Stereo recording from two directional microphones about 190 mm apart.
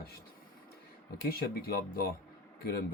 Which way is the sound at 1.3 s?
55° left (ahead or behind).